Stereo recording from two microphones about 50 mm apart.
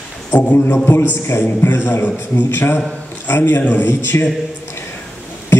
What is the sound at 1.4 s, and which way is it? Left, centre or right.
A man's voice, left.